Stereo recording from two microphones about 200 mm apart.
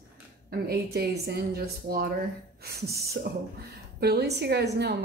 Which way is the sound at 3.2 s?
55° right (ahead or behind).